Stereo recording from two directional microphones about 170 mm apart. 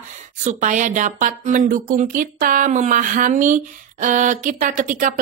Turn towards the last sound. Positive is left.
turn(degrees=-50)  # may be behind; listen again after turning